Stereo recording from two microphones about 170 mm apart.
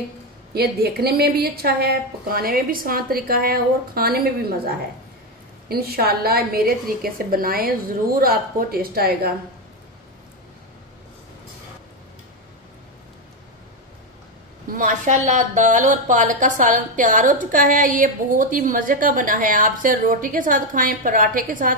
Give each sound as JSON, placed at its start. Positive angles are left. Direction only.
{"t": 0.6, "sound": "a woman's voice", "side_deg": -70}
{"t": 14.7, "sound": "a woman's voice", "side_deg": -50}